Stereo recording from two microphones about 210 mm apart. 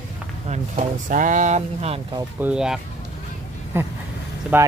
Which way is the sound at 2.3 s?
5° right (ahead or behind).